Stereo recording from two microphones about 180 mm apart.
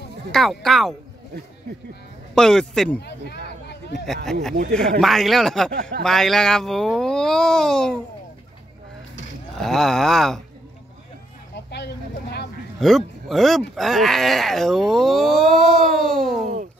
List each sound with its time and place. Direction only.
0.3 s speech: centre (ahead or behind)
2.3 s speech: 5° left (ahead or behind)
3.0 s speech: 65° left (ahead or behind)
4.3 s speech: centre (ahead or behind)
5.7 s speech: 50° right (ahead or behind)
6.0 s speech: centre (ahead or behind)
9.6 s speech: centre (ahead or behind)
11.5 s a sound: 70° left (ahead or behind)
12.8 s speech: centre (ahead or behind)